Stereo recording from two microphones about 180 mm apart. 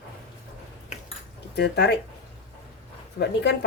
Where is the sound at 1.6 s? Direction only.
65° left (ahead or behind).